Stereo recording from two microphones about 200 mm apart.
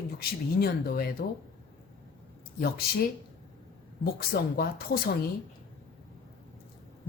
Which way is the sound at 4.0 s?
50° left (ahead or behind).